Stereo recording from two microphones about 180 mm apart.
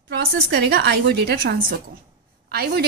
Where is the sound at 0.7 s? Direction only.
65° right (ahead or behind).